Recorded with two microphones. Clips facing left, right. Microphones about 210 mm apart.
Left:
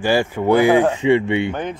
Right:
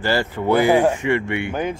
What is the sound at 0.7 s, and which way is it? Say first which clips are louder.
Speech: left 1 dB; 15° right (ahead or behind).